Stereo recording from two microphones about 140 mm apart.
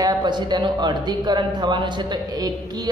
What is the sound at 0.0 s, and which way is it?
Speech, 30° right (ahead or behind).